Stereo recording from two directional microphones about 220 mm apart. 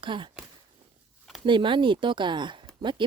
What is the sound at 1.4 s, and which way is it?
Speech, 20° right (ahead or behind).